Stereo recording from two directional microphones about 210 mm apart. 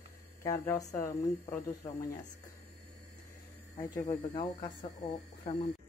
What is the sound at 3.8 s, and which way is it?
Speech, 15° left (ahead or behind).